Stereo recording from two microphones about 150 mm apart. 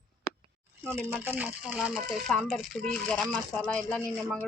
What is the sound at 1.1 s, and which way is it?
Speech, 10° right (ahead or behind).